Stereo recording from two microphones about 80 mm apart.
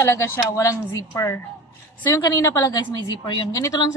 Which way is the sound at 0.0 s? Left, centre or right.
Left.